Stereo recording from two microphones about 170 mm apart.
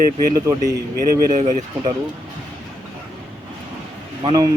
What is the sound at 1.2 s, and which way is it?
Speech, 45° right (ahead or behind).